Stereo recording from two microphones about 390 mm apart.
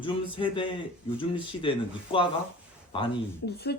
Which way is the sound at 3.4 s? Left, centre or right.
Left.